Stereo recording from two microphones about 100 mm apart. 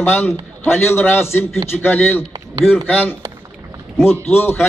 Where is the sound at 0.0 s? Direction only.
20° left (ahead or behind).